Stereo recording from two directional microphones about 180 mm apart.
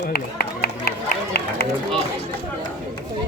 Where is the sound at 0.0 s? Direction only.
55° left (ahead or behind).